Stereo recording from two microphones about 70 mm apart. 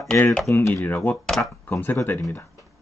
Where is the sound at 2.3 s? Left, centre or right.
Left.